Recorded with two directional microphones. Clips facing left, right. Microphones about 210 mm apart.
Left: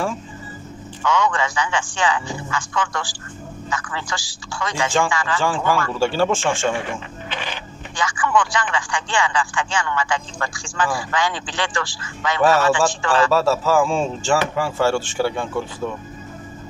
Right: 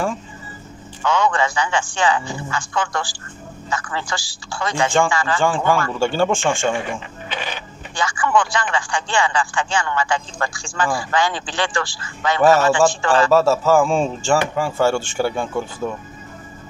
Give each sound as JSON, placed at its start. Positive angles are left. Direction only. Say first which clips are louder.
{"t": 1.0, "sound": "speech", "louder": "right 2 dB", "side_deg": -30}
{"t": 5.4, "sound": "speech", "louder": "right 2 dB", "side_deg": 5}
{"t": 6.9, "sound": "music", "louder": "right 1 dB", "side_deg": -10}
{"t": 8.0, "sound": "speech", "louder": "right 1 dB", "side_deg": -35}
{"t": 13.3, "sound": "speech", "louder": "right 3 dB", "side_deg": 0}